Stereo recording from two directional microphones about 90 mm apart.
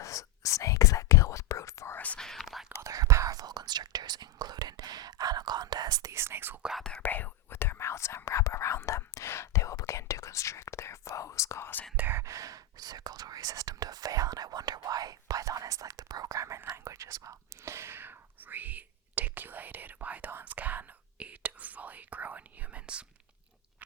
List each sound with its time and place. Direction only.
0.0 s whispering: 35° left (ahead or behind)
2.0 s whispering: 15° left (ahead or behind)
2.2 s whispering: 5° left (ahead or behind)
2.8 s whispering: 40° right (ahead or behind)
6.6 s whispering: 5° right (ahead or behind)
7.0 s whispering: 20° left (ahead or behind)
11.9 s whispering: 20° right (ahead or behind)
12.2 s whispering: 35° right (ahead or behind); by 23.0 s 15° right (ahead or behind)